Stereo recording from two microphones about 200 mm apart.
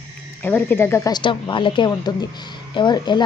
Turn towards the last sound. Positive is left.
turn(degrees=20)  # may be behind; listen again after turning